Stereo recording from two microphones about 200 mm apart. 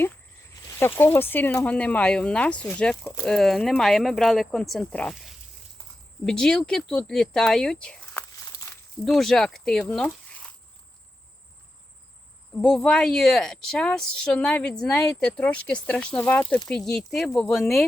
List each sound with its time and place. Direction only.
0.8 s speech: 10° left (ahead or behind)
12.6 s speech: centre (ahead or behind)